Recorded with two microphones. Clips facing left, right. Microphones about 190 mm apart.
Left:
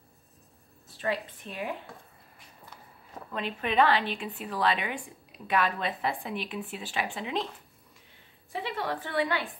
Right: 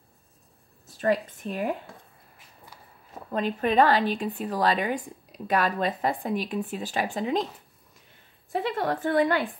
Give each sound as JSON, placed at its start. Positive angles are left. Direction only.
{"t": 0.8, "sound": "speech", "side_deg": -45}
{"t": 3.3, "sound": "speech", "side_deg": -40}
{"t": 8.5, "sound": "a woman's voice", "side_deg": -45}